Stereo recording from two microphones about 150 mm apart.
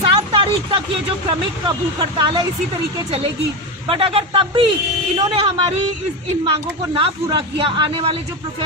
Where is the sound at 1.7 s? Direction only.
30° right (ahead or behind).